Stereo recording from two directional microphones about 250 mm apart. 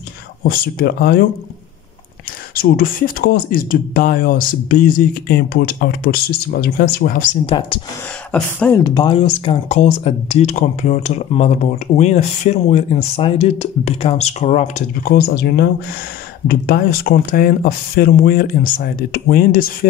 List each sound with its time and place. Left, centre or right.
0.4 s speech: left
2.5 s speech: left
8.3 s speech: centre; by 19.9 s left